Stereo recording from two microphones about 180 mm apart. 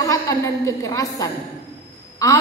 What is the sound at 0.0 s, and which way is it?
A woman's voice, 20° left (ahead or behind).